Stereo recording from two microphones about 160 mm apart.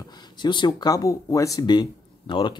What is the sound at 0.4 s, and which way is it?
Speech, 30° left (ahead or behind).